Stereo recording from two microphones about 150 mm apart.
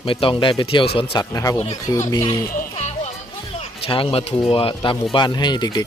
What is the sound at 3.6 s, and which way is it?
Speech, 35° left (ahead or behind).